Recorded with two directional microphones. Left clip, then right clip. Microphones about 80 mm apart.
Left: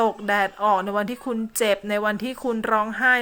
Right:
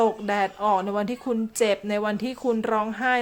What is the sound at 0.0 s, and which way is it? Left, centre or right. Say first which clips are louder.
Speech: left 2 dB; centre.